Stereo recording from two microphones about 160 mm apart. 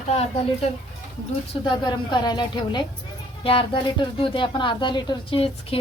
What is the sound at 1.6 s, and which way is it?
A woman's voice, 30° left (ahead or behind).